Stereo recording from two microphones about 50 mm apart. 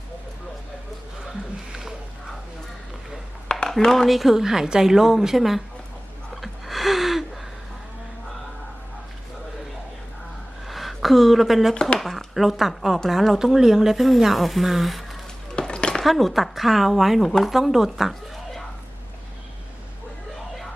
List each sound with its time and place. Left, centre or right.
3.5 s speech: centre
6.3 s gasp: centre
10.7 s a sound: centre
11.7 s speech: centre
11.9 s speech: centre
15.5 s a sound: centre
16.0 s speech: centre